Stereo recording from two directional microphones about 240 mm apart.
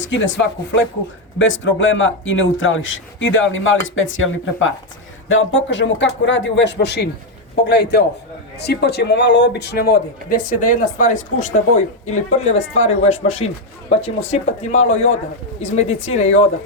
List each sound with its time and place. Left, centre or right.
0.0 s speech: left